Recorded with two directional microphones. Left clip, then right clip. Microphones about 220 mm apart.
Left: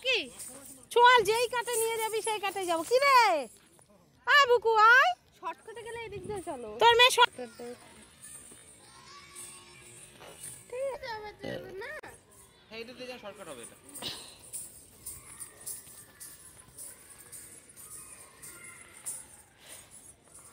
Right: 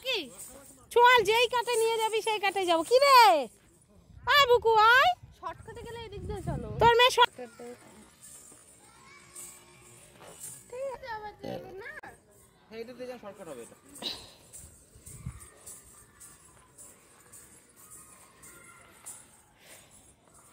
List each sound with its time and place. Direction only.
0.0 s a sound: 55° right (ahead or behind)
0.8 s speech: 5° right (ahead or behind)
4.2 s speech: 5° right (ahead or behind)
5.4 s speech: 40° left (ahead or behind)
6.8 s speech: 10° right (ahead or behind)
10.2 s music: 30° left (ahead or behind)
11.0 s a child's voice: 30° right (ahead or behind)
11.8 s oink: 30° right (ahead or behind)
12.7 s speech: 50° right (ahead or behind)
13.9 s a sound: 15° right (ahead or behind)